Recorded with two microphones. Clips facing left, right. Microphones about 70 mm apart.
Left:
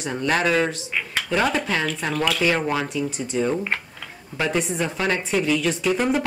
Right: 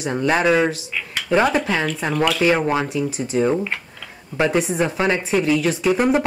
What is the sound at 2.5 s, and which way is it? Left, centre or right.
Speech, right.